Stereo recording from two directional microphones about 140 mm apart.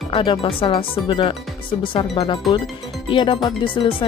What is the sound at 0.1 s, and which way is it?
Speech, 40° left (ahead or behind).